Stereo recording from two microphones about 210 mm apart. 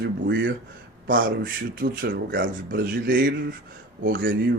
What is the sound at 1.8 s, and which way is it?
Speech, 60° right (ahead or behind).